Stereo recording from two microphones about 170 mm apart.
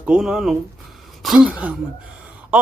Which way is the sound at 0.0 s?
5° right (ahead or behind).